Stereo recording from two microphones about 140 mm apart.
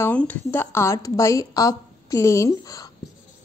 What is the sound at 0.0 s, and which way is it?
A woman's voice, 10° left (ahead or behind).